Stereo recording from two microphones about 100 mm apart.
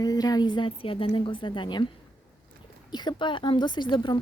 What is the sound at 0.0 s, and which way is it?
A woman's voice, 40° left (ahead or behind).